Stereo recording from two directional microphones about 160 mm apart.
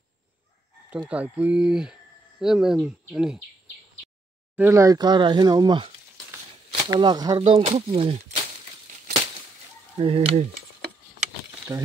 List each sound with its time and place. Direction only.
0.8 s speech: 10° right (ahead or behind)
4.6 s speech: 15° right (ahead or behind); by 8.2 s 40° right (ahead or behind)
9.9 s speech: 35° right (ahead or behind)
11.7 s speech: 15° right (ahead or behind)